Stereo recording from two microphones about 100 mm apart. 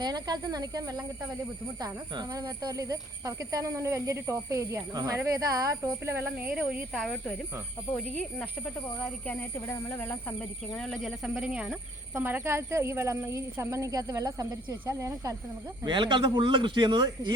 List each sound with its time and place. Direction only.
0.0 s speech: 40° right (ahead or behind)
6.5 s speech: 10° right (ahead or behind)
6.9 s speech: 5° left (ahead or behind)
10.8 s speech: 5° left (ahead or behind); by 15.4 s 35° right (ahead or behind)
15.8 s a man's voice: 50° right (ahead or behind)